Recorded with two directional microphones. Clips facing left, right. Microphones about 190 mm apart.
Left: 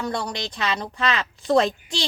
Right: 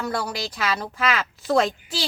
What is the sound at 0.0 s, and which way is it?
A woman's voice, 5° right (ahead or behind).